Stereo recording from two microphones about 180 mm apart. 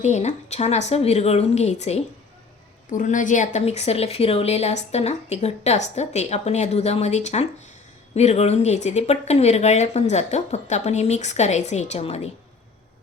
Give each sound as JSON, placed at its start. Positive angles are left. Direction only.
{"t": 0.0, "sound": "a woman's voice", "side_deg": 40}